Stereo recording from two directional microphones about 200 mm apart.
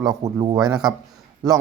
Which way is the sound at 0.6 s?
5° right (ahead or behind).